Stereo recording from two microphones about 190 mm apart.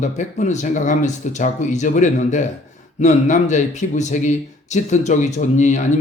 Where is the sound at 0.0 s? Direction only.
40° left (ahead or behind).